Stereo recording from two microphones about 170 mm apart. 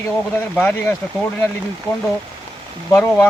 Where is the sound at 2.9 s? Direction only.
10° left (ahead or behind).